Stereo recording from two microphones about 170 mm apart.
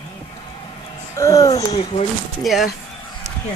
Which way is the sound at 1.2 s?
20° left (ahead or behind).